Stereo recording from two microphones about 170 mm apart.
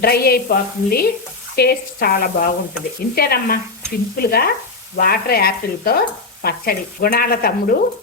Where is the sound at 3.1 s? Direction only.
65° left (ahead or behind).